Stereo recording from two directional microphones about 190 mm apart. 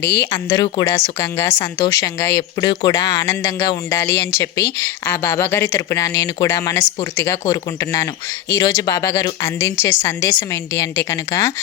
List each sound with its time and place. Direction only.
0.2 s a woman's voice: 20° left (ahead or behind)